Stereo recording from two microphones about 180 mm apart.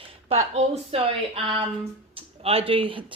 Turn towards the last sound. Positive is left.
turn(degrees=-30)  # may be behind; listen again after turning